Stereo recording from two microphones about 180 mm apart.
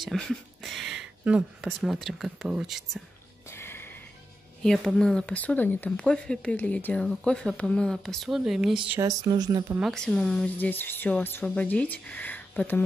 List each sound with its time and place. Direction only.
0.0 s speech: centre (ahead or behind)
3.4 s a sound: 15° left (ahead or behind)
4.6 s speech: 5° left (ahead or behind)
9.0 s speech: 20° right (ahead or behind)
9.8 s speech: 5° left (ahead or behind)